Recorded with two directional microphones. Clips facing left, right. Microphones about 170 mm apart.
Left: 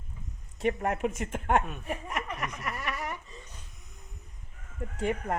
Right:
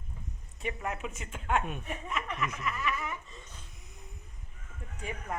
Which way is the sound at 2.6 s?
65° left (ahead or behind).